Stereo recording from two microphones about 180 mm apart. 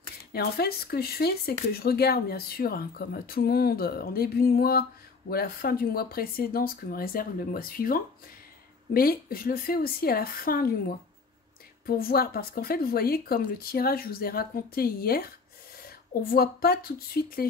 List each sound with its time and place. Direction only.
0.3 s speech: 60° left (ahead or behind)